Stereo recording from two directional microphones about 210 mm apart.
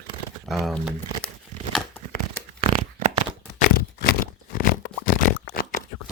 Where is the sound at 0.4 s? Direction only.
Centre (ahead or behind).